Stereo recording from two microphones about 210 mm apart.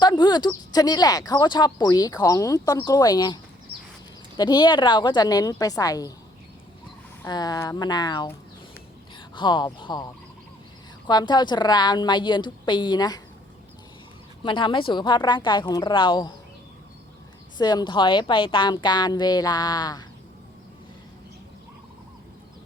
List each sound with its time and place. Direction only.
0.0 s speech: 20° left (ahead or behind)
3.7 s a sound: 50° right (ahead or behind)
4.4 s a woman's voice: 20° left (ahead or behind)
7.2 s a woman's voice: 20° left (ahead or behind)
14.4 s a woman's voice: 20° left (ahead or behind)
17.6 s a woman's voice: 20° left (ahead or behind)